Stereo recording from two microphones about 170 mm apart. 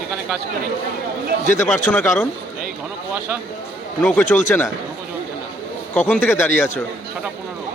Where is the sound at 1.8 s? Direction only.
15° left (ahead or behind).